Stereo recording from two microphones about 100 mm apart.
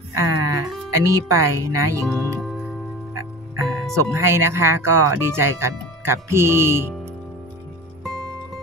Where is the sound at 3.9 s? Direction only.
30° right (ahead or behind).